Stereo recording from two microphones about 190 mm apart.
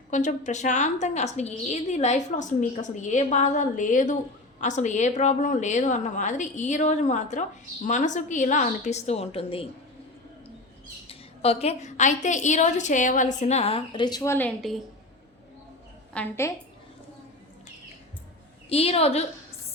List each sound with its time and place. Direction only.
0.1 s a woman's voice: 40° left (ahead or behind)
11.1 s a woman's voice: 30° left (ahead or behind); by 14.8 s 5° left (ahead or behind)
16.1 s a woman's voice: 10° left (ahead or behind)
18.7 s a woman's voice: 30° left (ahead or behind)